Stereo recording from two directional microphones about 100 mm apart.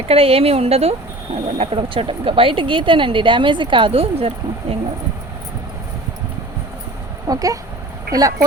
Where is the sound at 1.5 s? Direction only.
80° right.